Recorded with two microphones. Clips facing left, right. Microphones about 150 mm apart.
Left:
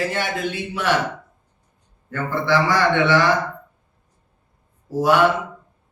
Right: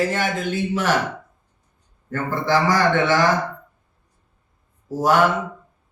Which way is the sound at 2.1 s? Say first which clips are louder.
Even; 45° right (ahead or behind).